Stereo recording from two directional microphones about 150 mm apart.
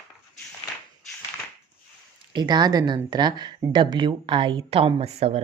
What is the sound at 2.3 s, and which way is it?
Speech, 30° right (ahead or behind).